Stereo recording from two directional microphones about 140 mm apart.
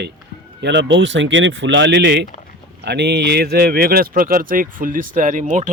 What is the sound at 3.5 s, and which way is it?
Speech, 90° right.